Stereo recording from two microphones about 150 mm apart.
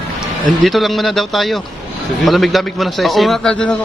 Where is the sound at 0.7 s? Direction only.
Centre (ahead or behind).